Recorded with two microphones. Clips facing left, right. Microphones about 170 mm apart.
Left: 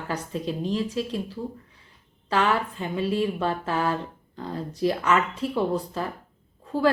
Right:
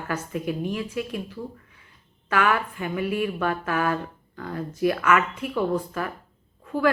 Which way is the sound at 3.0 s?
15° right (ahead or behind).